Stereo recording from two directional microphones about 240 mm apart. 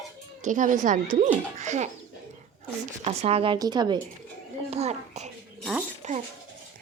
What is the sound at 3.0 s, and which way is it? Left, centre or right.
Speech, right.